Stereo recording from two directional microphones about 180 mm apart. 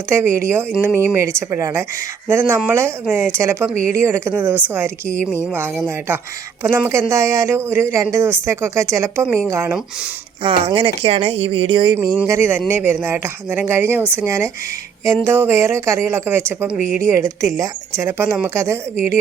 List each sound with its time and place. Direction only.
0.1 s speech: 15° right (ahead or behind)
10.4 s speech: 30° right (ahead or behind)
12.2 s speech: 10° right (ahead or behind)